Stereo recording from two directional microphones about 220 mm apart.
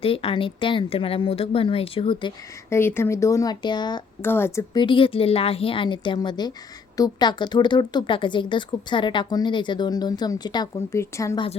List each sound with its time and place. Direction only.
0.0 s speech: 25° left (ahead or behind)
2.6 s speech: 10° left (ahead or behind)